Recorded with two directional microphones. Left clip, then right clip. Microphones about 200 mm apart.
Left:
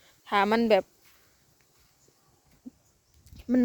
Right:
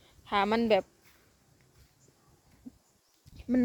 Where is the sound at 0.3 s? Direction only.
30° left (ahead or behind).